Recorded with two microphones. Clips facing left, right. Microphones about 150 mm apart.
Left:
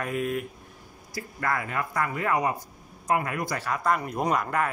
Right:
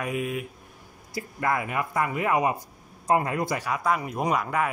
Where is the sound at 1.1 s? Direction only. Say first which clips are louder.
Right 2 dB; 20° right (ahead or behind).